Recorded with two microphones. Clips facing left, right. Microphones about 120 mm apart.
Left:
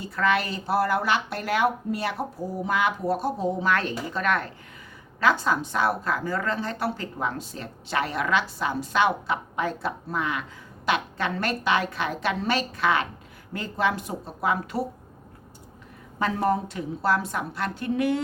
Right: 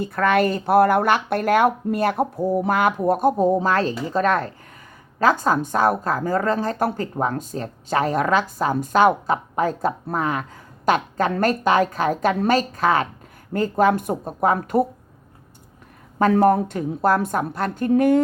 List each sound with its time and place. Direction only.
0.0 s a woman's voice: 55° right (ahead or behind)
16.1 s speech: 55° right (ahead or behind)